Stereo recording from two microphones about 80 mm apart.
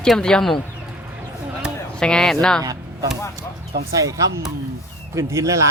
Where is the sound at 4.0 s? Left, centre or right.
Right.